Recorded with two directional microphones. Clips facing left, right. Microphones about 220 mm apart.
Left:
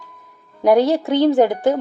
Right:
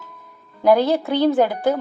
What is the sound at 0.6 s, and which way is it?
Speech, 15° left (ahead or behind).